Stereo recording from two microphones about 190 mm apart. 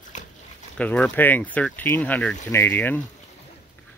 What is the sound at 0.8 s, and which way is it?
Speech, 5° left (ahead or behind).